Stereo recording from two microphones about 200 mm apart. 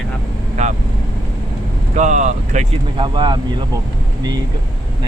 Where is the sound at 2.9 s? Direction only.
25° right (ahead or behind).